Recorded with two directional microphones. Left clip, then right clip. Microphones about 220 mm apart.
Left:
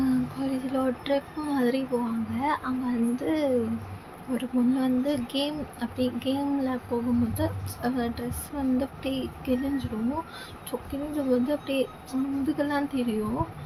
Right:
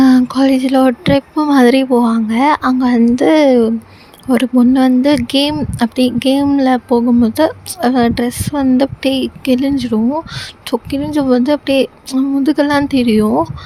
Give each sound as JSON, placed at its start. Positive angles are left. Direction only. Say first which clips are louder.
{"t": 0.0, "sound": "speech", "louder": "right 18 dB", "side_deg": -50}